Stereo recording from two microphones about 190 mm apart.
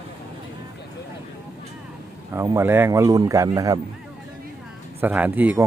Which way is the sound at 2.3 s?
15° right (ahead or behind).